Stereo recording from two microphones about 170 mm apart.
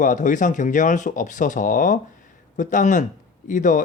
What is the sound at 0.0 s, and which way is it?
Speech, 50° left (ahead or behind).